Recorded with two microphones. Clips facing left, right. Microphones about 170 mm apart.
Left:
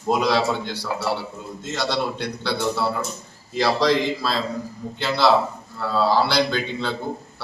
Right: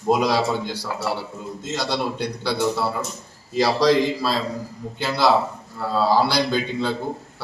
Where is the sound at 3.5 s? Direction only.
10° right (ahead or behind).